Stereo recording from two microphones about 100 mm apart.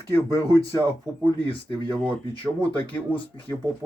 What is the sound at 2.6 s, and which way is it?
Speech, 15° left (ahead or behind).